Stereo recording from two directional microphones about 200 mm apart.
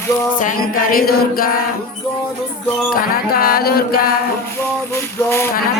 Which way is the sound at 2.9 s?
50° left (ahead or behind).